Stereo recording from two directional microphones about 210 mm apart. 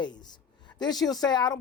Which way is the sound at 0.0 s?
20° left (ahead or behind).